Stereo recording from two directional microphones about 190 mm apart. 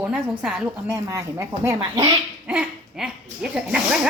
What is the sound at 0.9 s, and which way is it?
Speech, 15° right (ahead or behind).